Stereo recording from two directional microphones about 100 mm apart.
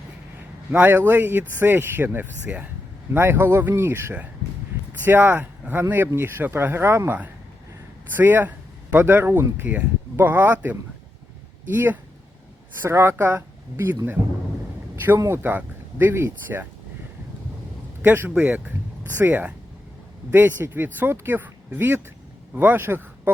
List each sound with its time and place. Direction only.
0.7 s speech: 20° right (ahead or behind)
15.2 s speech: 25° right (ahead or behind)
18.0 s speech: 20° right (ahead or behind)